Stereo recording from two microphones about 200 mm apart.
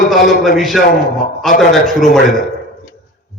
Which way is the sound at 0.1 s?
Centre (ahead or behind).